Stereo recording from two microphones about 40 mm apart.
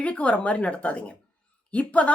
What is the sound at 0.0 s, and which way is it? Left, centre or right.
Speech, left.